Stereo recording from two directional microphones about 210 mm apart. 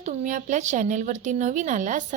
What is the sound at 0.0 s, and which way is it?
Speech, 35° right (ahead or behind).